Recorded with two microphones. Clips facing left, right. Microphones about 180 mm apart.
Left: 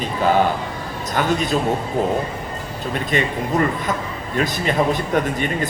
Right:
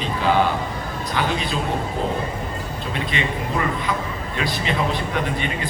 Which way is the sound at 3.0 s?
45° left (ahead or behind).